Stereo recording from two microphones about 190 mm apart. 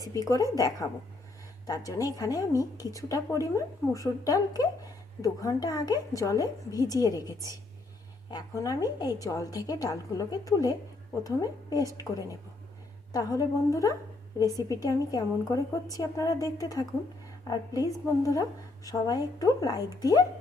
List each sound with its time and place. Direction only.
0.0 s a woman's voice: 20° left (ahead or behind)